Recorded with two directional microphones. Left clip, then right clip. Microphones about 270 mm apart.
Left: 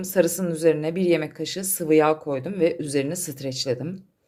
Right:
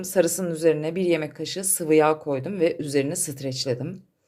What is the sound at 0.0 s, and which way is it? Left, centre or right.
Speech, centre.